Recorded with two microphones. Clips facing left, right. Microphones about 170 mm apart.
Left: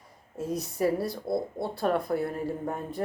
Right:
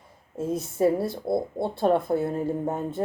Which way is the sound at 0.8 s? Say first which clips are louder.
Right 5 dB; 25° right (ahead or behind).